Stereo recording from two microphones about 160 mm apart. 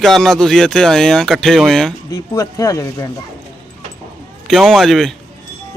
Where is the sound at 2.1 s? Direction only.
20° left (ahead or behind).